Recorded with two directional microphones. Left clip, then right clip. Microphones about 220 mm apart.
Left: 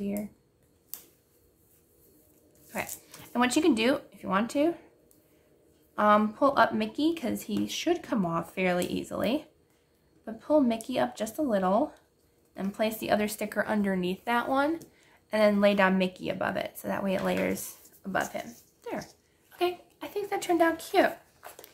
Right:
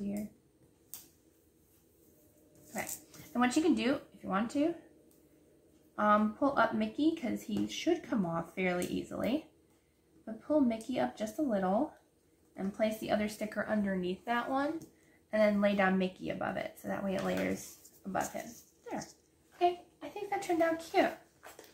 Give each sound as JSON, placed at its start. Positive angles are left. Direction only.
{"t": 2.7, "sound": "speech", "side_deg": 45}
{"t": 5.9, "sound": "speech", "side_deg": 45}
{"t": 18.3, "sound": "a sound", "side_deg": 50}
{"t": 19.6, "sound": "a woman's voice", "side_deg": 50}